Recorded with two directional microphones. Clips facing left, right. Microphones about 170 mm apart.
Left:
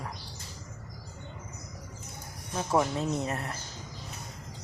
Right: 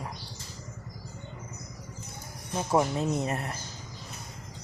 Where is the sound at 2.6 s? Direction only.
15° right (ahead or behind).